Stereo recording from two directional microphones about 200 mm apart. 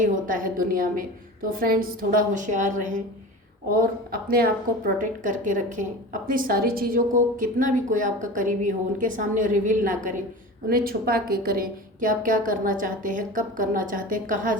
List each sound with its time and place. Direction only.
0.0 s a woman's voice: 40° right (ahead or behind)